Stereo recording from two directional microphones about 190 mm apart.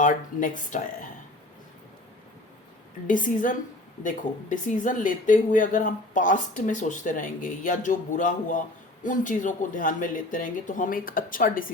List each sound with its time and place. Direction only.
0.0 s speech: 45° left (ahead or behind)
3.1 s speech: 45° left (ahead or behind)